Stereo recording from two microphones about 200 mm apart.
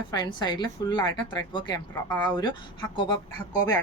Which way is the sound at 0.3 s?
20° left (ahead or behind).